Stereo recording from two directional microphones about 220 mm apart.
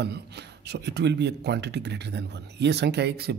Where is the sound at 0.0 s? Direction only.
50° right (ahead or behind).